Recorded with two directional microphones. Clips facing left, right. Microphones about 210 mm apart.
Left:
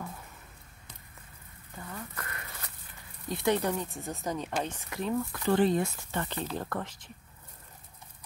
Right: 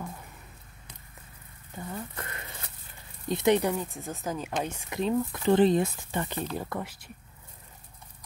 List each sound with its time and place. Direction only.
1.8 s a sound: 25° right (ahead or behind)
3.3 s speech: 20° right (ahead or behind)
3.7 s speech: centre (ahead or behind)
4.6 s speech: 15° right (ahead or behind)